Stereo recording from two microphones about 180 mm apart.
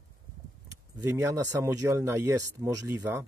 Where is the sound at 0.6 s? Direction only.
15° right (ahead or behind).